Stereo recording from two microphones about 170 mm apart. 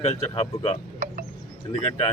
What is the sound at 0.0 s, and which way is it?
Speech, 35° left (ahead or behind).